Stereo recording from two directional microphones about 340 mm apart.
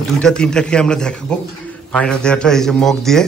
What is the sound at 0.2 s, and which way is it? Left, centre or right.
A man's voice, centre.